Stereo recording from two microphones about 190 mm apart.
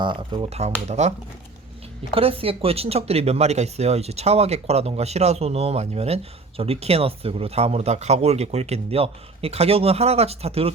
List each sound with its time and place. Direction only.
0.0 s speech: 25° right (ahead or behind)
2.1 s speech: 30° right (ahead or behind)